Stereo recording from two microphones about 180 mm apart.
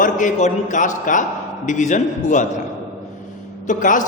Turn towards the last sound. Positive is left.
turn(degrees=45)  # may be behind; listen again after turning